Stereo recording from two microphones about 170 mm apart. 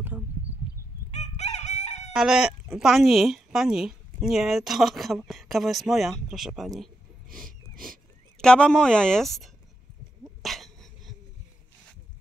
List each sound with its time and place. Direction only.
0.1 s a sound: 10° right (ahead or behind)
1.1 s crowing: 40° left (ahead or behind)
2.1 s speech: 5° right (ahead or behind)
10.2 s dog: centre (ahead or behind)